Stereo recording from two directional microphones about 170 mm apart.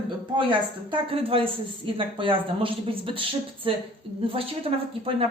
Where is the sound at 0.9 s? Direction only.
35° right (ahead or behind).